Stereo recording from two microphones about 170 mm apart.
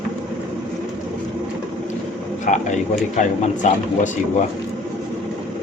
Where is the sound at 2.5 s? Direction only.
45° left (ahead or behind).